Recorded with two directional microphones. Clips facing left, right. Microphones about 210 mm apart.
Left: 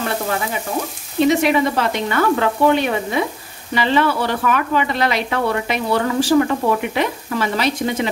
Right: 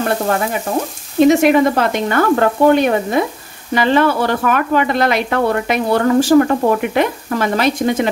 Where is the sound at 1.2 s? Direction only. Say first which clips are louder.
Right 5 dB; 50° right (ahead or behind).